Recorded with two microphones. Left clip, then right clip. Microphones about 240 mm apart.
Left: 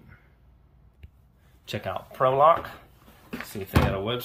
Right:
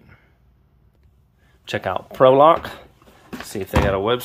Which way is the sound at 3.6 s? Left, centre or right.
Centre.